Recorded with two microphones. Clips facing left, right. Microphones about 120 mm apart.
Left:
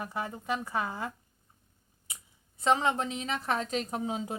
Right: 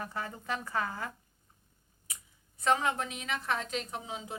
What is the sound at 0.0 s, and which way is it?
Speech, 15° left (ahead or behind).